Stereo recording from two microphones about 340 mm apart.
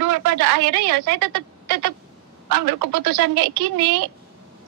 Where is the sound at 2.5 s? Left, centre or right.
Right.